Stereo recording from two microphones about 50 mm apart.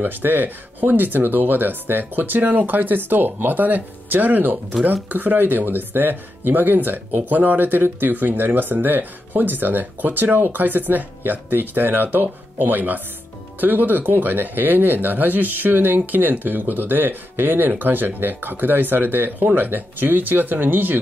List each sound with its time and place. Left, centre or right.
0.0 s speech: right